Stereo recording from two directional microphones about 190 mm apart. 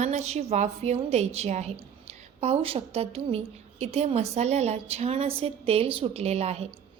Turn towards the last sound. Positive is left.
turn(degrees=-35)  # may be behind; listen again after turning